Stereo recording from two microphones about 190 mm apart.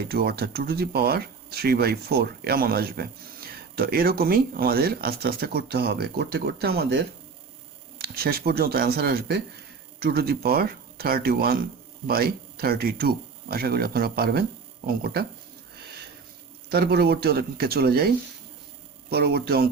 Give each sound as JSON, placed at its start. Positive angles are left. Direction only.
{"t": 0.1, "sound": "speech", "side_deg": -55}
{"t": 16.7, "sound": "speech", "side_deg": -60}
{"t": 19.1, "sound": "speech", "side_deg": -55}